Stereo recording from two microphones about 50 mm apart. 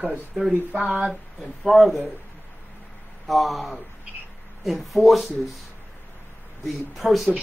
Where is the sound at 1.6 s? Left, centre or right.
Centre.